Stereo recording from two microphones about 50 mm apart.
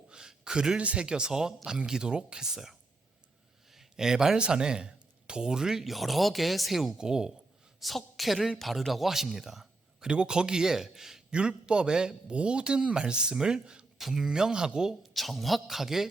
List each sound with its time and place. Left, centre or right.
0.1 s a sound: centre
0.8 s a man's voice: right
3.7 s a sound: centre
4.4 s a man's voice: centre
7.0 s a man's voice: centre
7.8 s speech: centre
10.1 s a man's voice: centre
15.1 s a man's voice: centre